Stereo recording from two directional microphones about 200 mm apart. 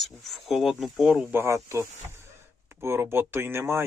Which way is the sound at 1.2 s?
15° right (ahead or behind).